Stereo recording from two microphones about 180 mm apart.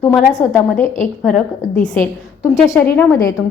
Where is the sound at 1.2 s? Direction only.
5° left (ahead or behind).